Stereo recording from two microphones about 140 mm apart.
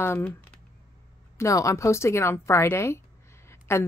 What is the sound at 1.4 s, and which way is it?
A woman's voice, 25° left (ahead or behind).